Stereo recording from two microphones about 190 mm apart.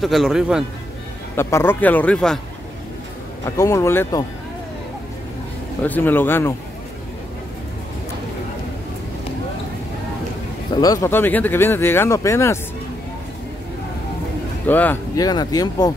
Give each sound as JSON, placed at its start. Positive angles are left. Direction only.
{"t": 0.0, "sound": "a man's voice", "side_deg": 0}
{"t": 1.3, "sound": "speech", "side_deg": 10}
{"t": 3.4, "sound": "speech", "side_deg": 15}
{"t": 5.9, "sound": "speech", "side_deg": 10}
{"t": 10.7, "sound": "speech", "side_deg": 20}
{"t": 14.7, "sound": "speech", "side_deg": 10}
{"t": 15.2, "sound": "speech", "side_deg": 20}